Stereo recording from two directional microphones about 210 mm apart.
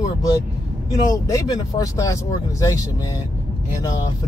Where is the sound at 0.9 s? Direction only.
15° left (ahead or behind).